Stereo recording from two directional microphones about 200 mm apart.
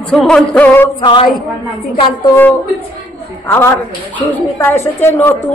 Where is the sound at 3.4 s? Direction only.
10° left (ahead or behind).